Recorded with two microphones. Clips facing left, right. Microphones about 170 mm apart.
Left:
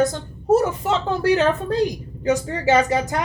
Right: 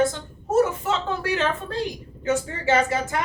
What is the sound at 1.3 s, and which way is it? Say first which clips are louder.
Speech: left 5 dB; 45° left (ahead or behind).